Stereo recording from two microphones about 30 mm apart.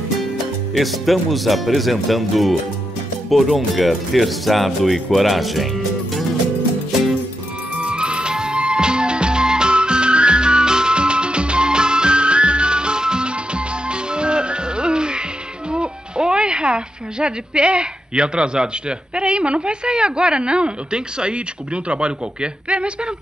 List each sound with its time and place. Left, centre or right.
0.7 s speech: centre
7.7 s music: right
15.7 s speech: right